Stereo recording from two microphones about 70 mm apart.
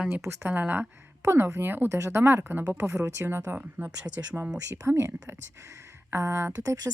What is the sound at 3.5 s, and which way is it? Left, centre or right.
Speech, centre.